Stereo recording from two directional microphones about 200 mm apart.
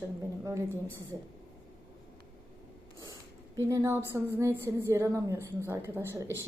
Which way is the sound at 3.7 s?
15° right (ahead or behind).